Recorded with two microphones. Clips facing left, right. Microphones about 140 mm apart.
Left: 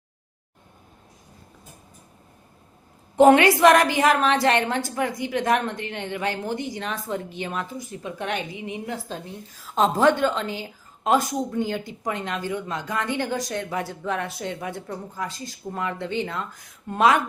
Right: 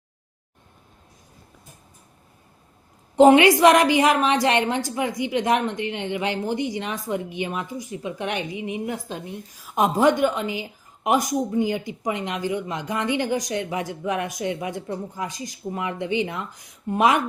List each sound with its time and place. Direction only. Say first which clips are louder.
3.2 s a woman's voice: right 1 dB; 20° right (ahead or behind)